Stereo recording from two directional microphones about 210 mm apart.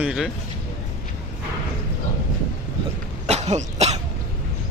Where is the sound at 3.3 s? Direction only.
30° right (ahead or behind).